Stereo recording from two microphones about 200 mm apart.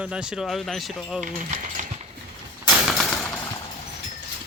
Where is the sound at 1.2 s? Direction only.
40° right (ahead or behind).